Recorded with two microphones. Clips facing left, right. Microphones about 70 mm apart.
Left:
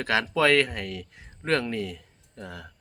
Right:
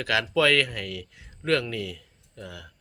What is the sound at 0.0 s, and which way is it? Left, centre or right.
Speech, left.